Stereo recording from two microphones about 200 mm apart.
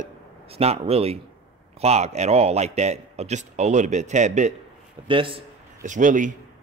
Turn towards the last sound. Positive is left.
turn(degrees=-40)  # may be behind; listen again after turning